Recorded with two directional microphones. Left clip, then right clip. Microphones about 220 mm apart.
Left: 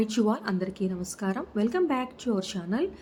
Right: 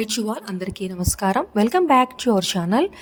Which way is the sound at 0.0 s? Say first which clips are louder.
Right 2 dB; 50° right (ahead or behind).